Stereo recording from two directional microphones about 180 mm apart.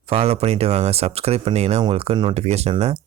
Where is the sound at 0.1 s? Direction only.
35° right (ahead or behind).